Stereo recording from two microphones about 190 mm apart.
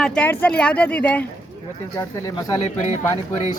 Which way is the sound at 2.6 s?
35° left (ahead or behind).